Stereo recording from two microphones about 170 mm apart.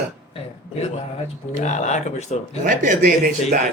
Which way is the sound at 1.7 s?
45° left (ahead or behind).